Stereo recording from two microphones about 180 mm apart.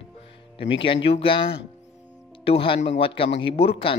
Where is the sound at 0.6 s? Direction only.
30° left (ahead or behind).